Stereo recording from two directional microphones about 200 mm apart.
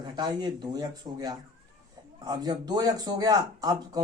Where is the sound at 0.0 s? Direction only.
20° right (ahead or behind).